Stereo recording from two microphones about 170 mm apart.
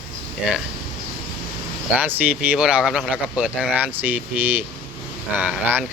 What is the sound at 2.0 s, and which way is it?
Speech, 10° right (ahead or behind).